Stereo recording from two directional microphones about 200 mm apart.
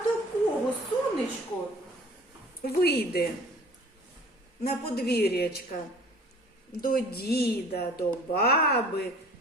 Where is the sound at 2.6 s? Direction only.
50° left (ahead or behind).